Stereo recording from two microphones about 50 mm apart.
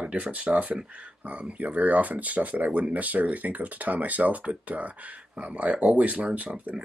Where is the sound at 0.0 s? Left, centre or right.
Right.